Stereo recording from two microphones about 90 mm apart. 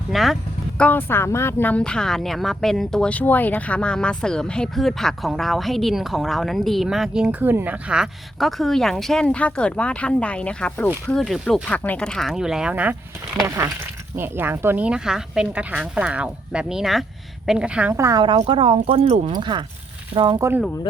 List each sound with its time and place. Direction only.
0.1 s vehicle: centre (ahead or behind)
0.8 s speech: 20° left (ahead or behind)
11.0 s speech: centre (ahead or behind); by 13.0 s 15° right (ahead or behind)
14.2 s speech: 25° right (ahead or behind)
14.8 s speech: 10° right (ahead or behind)
17.9 s a woman's voice: 35° right (ahead or behind)
18.2 s speech: 70° right (ahead or behind); by 19.3 s 90° right
19.3 s speech: 55° right (ahead or behind)